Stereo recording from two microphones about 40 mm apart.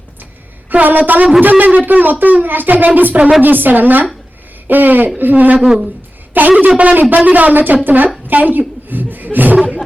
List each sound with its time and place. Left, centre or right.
0.7 s speech: right
5.6 s speech: centre
6.6 s speech: right
8.3 s chuckle: right